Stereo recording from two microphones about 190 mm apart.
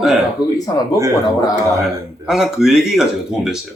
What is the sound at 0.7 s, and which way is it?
Speech, 20° left (ahead or behind).